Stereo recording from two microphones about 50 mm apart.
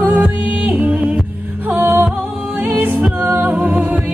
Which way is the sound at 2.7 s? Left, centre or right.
Right.